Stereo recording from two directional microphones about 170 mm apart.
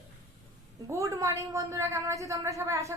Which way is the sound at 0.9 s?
20° right (ahead or behind).